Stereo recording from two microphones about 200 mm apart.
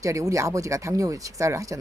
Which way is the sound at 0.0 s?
15° right (ahead or behind).